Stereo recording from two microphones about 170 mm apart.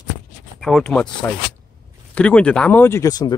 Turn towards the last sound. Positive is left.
turn(degrees=20)  # may be behind; listen again after turning